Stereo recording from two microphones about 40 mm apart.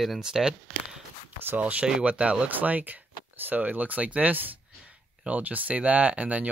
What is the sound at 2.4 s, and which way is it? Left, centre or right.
Speech, right.